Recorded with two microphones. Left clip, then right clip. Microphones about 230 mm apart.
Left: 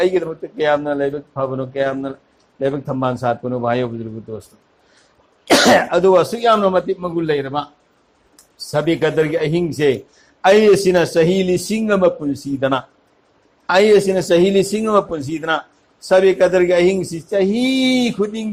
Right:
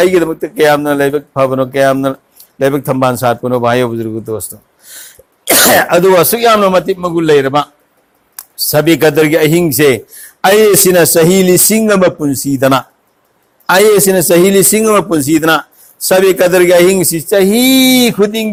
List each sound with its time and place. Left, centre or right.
0.0 s a man's voice: right
5.5 s a man's voice: right